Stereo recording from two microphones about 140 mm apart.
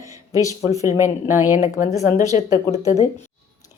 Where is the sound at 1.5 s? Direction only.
55° left (ahead or behind).